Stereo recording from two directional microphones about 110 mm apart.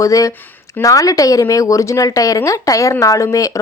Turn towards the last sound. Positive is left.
turn(degrees=30)  # may be behind; listen again after turning